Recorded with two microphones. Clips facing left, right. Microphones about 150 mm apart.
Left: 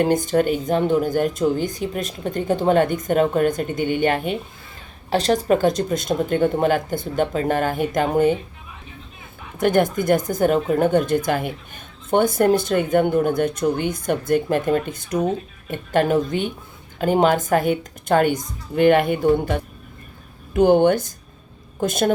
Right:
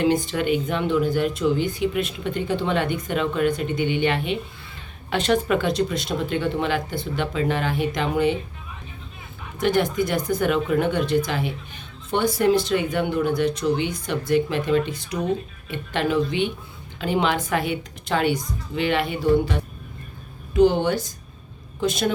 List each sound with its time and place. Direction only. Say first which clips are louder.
0.0 s speech: left 3 dB; 45° left (ahead or behind)
9.6 s speech: left 3 dB; 50° left (ahead or behind)